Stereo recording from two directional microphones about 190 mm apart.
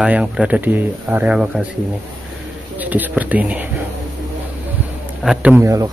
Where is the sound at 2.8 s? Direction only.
10° right (ahead or behind).